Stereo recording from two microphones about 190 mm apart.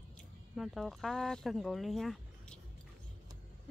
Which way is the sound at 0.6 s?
Centre (ahead or behind).